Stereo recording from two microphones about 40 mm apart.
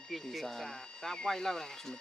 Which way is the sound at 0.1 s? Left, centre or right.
Centre.